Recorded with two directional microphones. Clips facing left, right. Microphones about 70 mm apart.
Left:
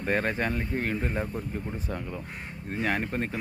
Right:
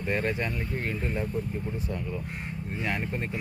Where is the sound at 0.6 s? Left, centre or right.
Left.